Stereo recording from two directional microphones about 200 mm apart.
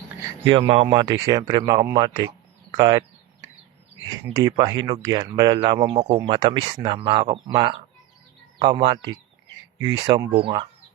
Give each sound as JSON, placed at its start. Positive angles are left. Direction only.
{"t": 0.2, "sound": "speech", "side_deg": -20}
{"t": 4.4, "sound": "speech", "side_deg": -20}